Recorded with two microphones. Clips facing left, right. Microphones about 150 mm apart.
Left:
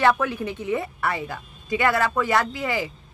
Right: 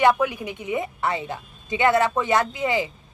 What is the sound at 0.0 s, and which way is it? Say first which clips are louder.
A woman's voice: right 1 dB; 15° right (ahead or behind).